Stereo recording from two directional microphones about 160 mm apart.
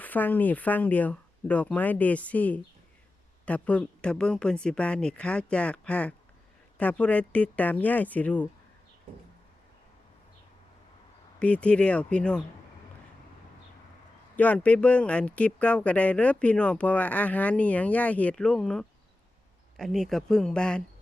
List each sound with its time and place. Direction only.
0.0 s speech: 10° left (ahead or behind)
11.3 s speech: 10° left (ahead or behind)
14.3 s speech: 10° left (ahead or behind)